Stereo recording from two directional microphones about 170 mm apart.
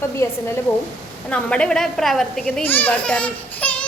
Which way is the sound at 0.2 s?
15° left (ahead or behind).